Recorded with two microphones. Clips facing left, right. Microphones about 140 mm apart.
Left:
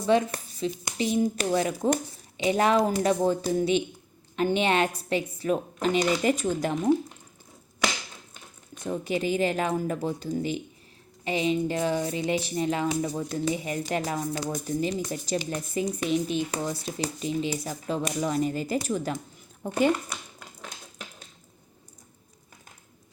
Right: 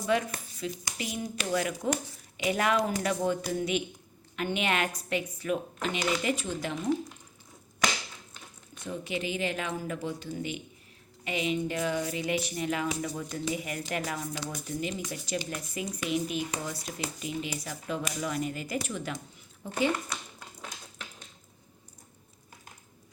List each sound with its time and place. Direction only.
0.0 s speech: 30° left (ahead or behind); by 6.7 s 45° left (ahead or behind)
8.8 s speech: 40° left (ahead or behind)
19.6 s speech: 50° left (ahead or behind)